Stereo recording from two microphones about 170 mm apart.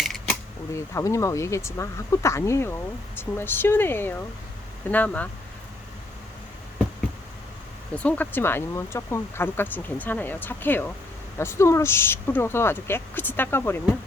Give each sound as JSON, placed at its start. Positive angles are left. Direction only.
{"t": 0.0, "sound": "a sound", "side_deg": 0}
{"t": 0.7, "sound": "speech", "side_deg": 15}
{"t": 7.9, "sound": "speech", "side_deg": 10}